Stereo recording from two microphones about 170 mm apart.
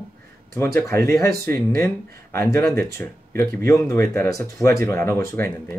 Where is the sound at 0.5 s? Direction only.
15° left (ahead or behind).